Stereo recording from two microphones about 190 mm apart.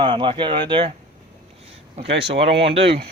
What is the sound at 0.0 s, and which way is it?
Speech, 25° right (ahead or behind).